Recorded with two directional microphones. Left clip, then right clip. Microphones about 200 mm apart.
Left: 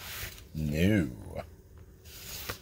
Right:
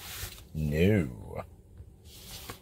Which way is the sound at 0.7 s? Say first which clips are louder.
Right 2 dB; 10° right (ahead or behind).